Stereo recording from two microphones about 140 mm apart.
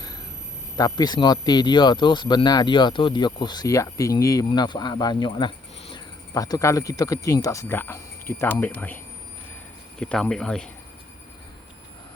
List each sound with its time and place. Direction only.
0.8 s speech: 30° left (ahead or behind)
10.0 s speech: 5° left (ahead or behind)